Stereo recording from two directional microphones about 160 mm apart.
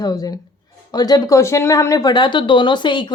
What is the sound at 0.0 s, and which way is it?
Speech, 25° left (ahead or behind).